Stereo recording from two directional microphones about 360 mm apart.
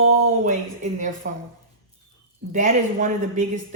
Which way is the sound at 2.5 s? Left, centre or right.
Right.